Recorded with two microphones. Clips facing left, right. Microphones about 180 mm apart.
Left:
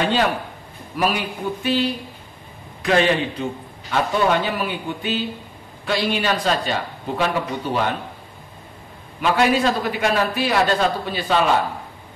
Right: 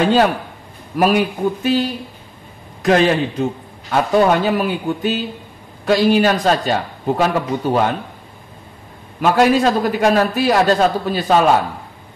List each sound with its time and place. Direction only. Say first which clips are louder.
0.0 s a man's voice: right 6 dB; 40° right (ahead or behind)
2.8 s a man's voice: right 4 dB; 45° right (ahead or behind)
9.2 s a man's voice: right 5 dB; 45° right (ahead or behind)